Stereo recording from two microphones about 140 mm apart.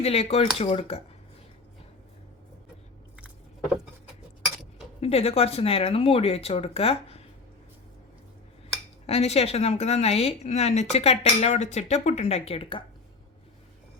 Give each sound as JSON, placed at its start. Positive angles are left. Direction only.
{"t": 0.0, "sound": "a woman's voice", "side_deg": 45}
{"t": 4.9, "sound": "a woman's voice", "side_deg": 45}
{"t": 9.0, "sound": "a woman's voice", "side_deg": 45}